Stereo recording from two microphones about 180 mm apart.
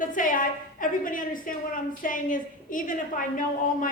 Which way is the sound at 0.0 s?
45° left (ahead or behind).